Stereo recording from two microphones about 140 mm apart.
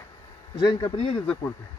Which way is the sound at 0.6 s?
30° left (ahead or behind).